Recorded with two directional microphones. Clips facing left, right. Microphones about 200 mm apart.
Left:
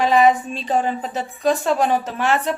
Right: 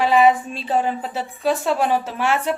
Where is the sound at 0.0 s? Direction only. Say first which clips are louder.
Even; 5° right (ahead or behind).